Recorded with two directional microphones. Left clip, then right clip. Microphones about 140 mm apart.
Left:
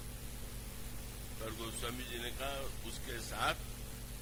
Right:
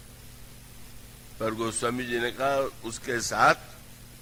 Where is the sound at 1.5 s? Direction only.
20° left (ahead or behind).